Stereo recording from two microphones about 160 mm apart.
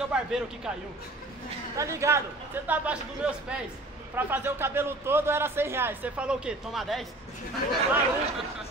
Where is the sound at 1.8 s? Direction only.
20° right (ahead or behind); by 7.0 s centre (ahead or behind).